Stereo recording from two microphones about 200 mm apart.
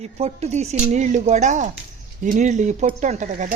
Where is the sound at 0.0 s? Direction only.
35° right (ahead or behind).